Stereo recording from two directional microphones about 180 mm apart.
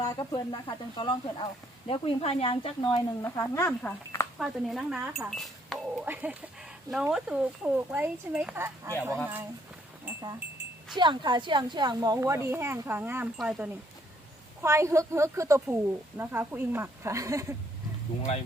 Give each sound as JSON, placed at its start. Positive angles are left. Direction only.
{"t": 0.0, "sound": "speech", "side_deg": 20}
{"t": 4.4, "sound": "speech", "side_deg": 0}
{"t": 6.1, "sound": "a woman's voice", "side_deg": -10}
{"t": 10.1, "sound": "goat", "side_deg": -15}
{"t": 10.9, "sound": "a woman's voice", "side_deg": -25}
{"t": 14.6, "sound": "a woman's voice", "side_deg": -15}